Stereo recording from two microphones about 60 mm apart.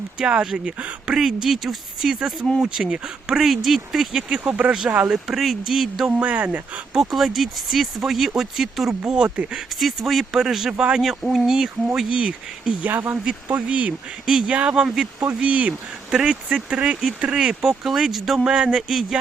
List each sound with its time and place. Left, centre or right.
0.2 s speech: centre
4.4 s speech: right
5.0 s speech: centre
6.2 s speech: right
6.9 s speech: centre
9.0 s speech: centre
9.8 s speech: centre
11.2 s speech: centre
11.9 s speech: centre
12.8 s speech: right
13.2 s speech: right
14.3 s speech: centre